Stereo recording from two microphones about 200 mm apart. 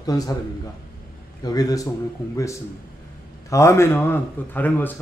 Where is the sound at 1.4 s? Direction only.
20° left (ahead or behind).